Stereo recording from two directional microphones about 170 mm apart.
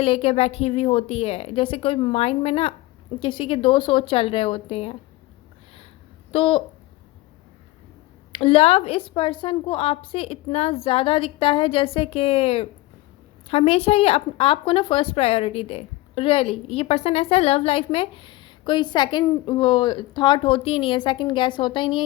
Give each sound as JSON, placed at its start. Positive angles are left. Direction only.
{"t": 0.0, "sound": "a woman's voice", "side_deg": 35}
{"t": 6.3, "sound": "a woman's voice", "side_deg": 30}
{"t": 8.3, "sound": "a woman's voice", "side_deg": 30}